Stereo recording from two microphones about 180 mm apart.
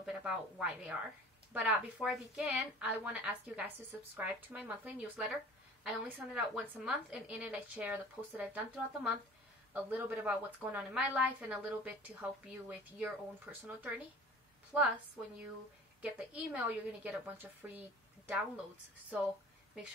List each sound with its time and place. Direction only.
0.0 s a woman's voice: 5° right (ahead or behind)
16.0 s a woman's voice: 5° right (ahead or behind)